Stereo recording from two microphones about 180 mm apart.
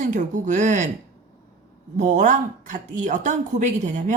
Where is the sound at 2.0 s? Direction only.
45° right (ahead or behind).